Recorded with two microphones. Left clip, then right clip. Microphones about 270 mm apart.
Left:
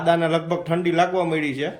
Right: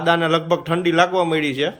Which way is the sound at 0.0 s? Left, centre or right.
Centre.